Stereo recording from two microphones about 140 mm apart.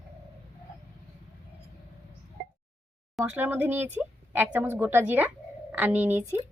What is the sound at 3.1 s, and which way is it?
Speech, 5° right (ahead or behind).